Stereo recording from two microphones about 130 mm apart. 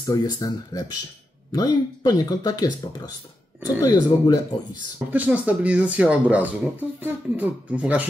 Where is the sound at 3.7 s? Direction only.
25° left (ahead or behind).